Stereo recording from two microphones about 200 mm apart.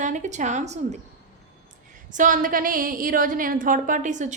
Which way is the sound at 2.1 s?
40° right (ahead or behind).